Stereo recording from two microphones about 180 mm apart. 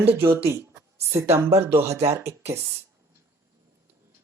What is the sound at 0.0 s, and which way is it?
Speech, 15° right (ahead or behind).